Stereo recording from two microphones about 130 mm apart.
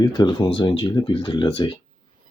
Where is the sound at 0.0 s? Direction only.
35° left (ahead or behind).